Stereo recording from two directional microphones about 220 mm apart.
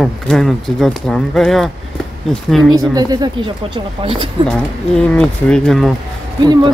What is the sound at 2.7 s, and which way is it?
Speech, 15° right (ahead or behind).